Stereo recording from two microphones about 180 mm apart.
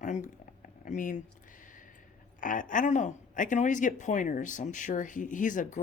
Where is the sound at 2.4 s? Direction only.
45° left (ahead or behind).